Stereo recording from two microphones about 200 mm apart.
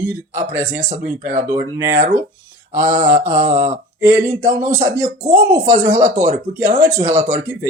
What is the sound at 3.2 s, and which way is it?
Speech, 35° right (ahead or behind).